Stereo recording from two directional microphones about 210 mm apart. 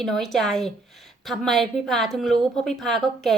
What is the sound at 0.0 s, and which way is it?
A woman's voice, centre (ahead or behind).